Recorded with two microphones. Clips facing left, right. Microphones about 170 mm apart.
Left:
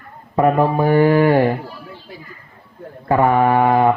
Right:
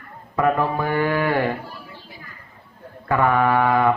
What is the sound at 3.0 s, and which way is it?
Speech, 30° left (ahead or behind).